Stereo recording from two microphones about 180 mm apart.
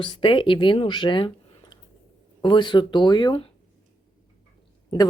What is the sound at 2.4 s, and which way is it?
A woman's voice, 25° left (ahead or behind).